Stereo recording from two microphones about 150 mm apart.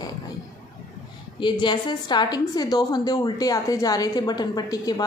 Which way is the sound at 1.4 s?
30° left (ahead or behind).